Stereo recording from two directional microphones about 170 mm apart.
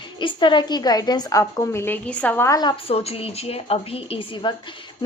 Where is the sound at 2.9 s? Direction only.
35° left (ahead or behind).